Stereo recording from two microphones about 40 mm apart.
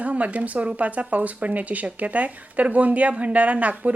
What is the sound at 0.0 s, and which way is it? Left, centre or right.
Speech, right.